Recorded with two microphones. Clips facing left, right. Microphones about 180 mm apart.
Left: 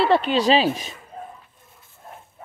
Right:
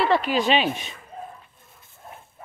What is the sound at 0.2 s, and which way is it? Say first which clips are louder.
Speech: left 3 dB; 35° left (ahead or behind).